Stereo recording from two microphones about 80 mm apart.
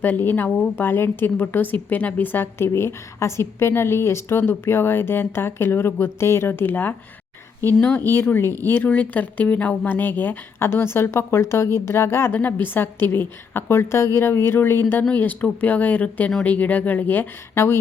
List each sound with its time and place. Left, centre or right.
0.0 s speech: left
8.0 s speech: left